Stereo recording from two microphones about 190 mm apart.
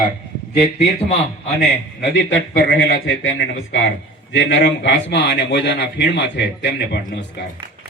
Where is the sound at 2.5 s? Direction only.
50° left (ahead or behind).